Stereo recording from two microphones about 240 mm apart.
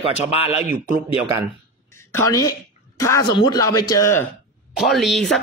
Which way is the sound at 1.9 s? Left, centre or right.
Centre.